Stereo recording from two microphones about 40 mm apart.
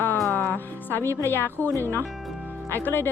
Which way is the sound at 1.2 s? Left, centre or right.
Left.